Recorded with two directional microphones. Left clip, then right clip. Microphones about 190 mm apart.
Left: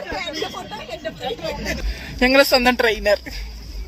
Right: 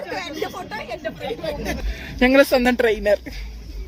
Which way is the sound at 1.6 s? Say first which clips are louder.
Left 1 dB; 35° right (ahead or behind).